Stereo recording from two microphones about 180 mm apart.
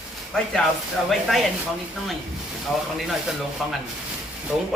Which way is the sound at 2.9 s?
Centre (ahead or behind).